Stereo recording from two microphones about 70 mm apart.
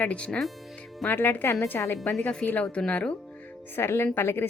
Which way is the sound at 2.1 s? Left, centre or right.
Centre.